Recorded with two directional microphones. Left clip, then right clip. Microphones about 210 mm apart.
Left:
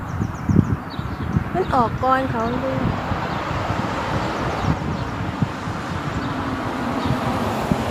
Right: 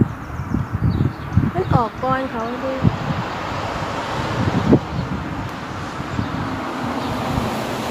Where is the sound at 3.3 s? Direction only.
45° right (ahead or behind).